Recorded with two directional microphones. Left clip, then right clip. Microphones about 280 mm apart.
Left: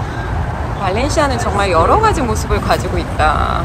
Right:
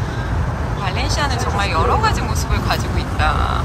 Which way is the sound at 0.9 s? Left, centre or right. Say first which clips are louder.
Left 7 dB; centre.